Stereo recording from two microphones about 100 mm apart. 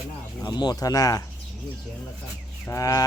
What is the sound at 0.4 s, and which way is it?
Speech, 45° left (ahead or behind).